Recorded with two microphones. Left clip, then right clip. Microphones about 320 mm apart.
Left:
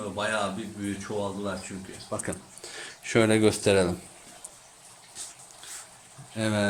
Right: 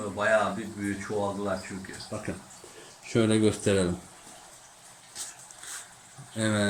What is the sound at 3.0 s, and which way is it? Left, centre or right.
Speech, left.